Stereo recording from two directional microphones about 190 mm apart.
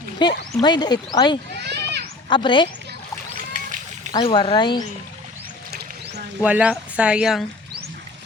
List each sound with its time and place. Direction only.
0.2 s speech: 25° left (ahead or behind)
1.6 s children playing: 60° right (ahead or behind)
2.3 s speech: 25° left (ahead or behind)
4.1 s speech: 25° left (ahead or behind)
6.4 s speech: 5° right (ahead or behind)